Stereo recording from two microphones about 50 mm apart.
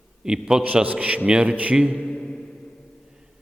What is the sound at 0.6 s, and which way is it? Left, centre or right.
A man's voice, right.